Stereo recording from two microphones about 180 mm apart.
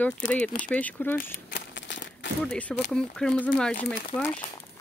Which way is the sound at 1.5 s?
80° left.